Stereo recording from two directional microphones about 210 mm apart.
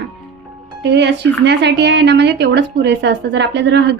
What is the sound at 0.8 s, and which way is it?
Speech, 55° right (ahead or behind).